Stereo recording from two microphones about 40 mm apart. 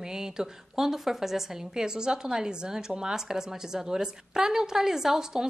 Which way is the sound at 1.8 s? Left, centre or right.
Centre.